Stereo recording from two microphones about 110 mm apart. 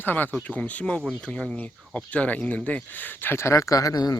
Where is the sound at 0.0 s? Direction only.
15° left (ahead or behind).